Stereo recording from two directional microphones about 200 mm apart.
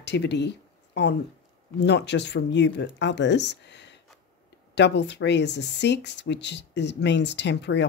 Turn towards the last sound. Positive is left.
turn(degrees=60)  # may be behind; listen again after turning